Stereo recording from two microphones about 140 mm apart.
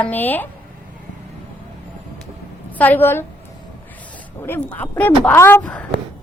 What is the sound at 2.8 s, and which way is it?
Speech, 15° left (ahead or behind).